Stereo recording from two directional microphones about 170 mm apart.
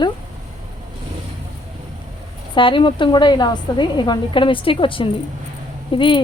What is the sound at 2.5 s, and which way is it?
A woman's voice, 30° left (ahead or behind).